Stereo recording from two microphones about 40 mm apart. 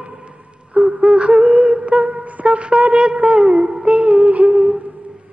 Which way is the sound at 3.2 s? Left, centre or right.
Right.